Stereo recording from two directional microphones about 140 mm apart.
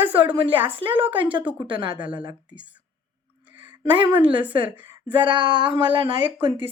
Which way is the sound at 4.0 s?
35° right (ahead or behind).